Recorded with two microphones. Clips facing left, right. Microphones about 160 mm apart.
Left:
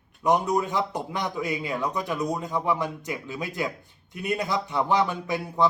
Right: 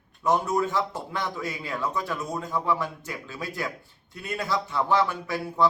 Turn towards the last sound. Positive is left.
turn(degrees=20)  # may be behind; listen again after turning